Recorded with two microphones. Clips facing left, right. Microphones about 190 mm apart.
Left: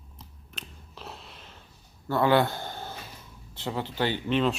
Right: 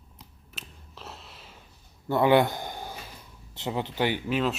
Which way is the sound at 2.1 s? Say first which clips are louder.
Right 2 dB; 20° right (ahead or behind).